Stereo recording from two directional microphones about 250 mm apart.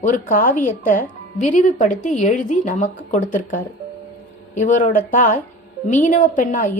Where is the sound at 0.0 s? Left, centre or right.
Left.